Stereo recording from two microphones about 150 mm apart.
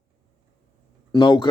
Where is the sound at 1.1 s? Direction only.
30° left (ahead or behind).